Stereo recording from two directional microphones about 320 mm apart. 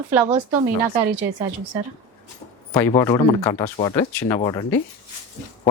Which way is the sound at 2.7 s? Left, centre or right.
Centre.